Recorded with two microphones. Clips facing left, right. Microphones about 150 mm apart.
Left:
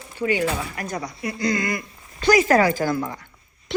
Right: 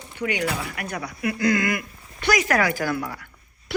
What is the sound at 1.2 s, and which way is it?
Speech, 60° right (ahead or behind).